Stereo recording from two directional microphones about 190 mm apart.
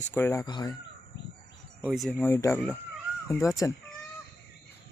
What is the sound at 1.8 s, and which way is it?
Speech, centre (ahead or behind).